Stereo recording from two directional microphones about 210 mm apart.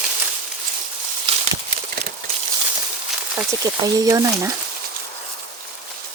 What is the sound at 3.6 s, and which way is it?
Speech, 15° right (ahead or behind).